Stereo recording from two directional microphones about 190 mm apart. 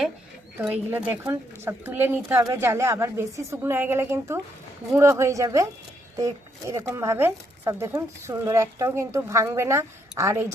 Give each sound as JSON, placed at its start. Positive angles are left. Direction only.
{"t": 0.6, "sound": "speech", "side_deg": -10}